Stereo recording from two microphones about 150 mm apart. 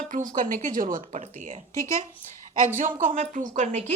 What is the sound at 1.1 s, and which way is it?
Speech, 50° right (ahead or behind).